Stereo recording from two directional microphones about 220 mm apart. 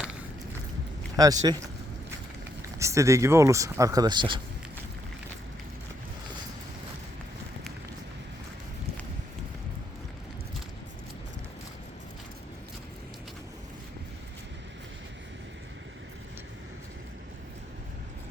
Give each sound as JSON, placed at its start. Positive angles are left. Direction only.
{"t": 1.1, "sound": "speech", "side_deg": -15}